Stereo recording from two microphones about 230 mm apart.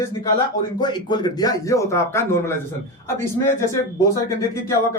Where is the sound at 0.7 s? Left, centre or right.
Centre.